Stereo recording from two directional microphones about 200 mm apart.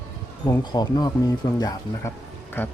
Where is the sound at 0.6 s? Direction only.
20° left (ahead or behind).